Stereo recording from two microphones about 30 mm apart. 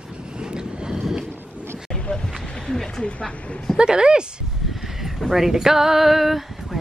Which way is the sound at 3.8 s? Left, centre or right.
Right.